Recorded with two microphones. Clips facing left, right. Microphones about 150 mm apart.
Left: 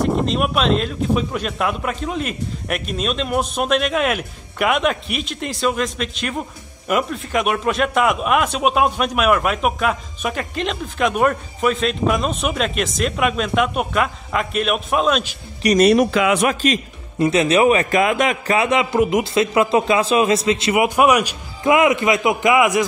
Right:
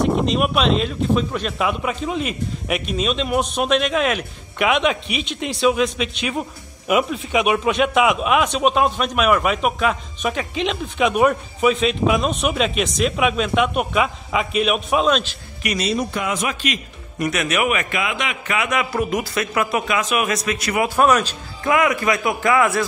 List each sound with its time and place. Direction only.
0.3 s a man's voice: centre (ahead or behind)
15.8 s speech: 75° left (ahead or behind)
16.4 s a man's voice: 40° left (ahead or behind)
17.2 s a man's voice: 25° left (ahead or behind)
18.0 s a man's voice: 45° left (ahead or behind); by 22.8 s 15° left (ahead or behind)